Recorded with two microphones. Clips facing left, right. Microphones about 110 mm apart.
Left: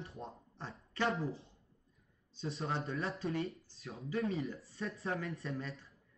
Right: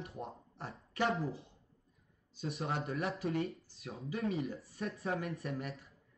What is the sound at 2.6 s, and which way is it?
Speech, centre (ahead or behind).